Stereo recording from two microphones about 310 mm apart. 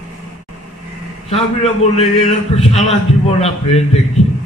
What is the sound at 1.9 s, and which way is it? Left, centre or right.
A man's voice, centre.